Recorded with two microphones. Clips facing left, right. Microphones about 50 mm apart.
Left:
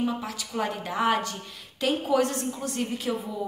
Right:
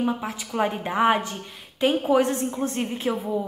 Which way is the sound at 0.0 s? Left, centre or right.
Right.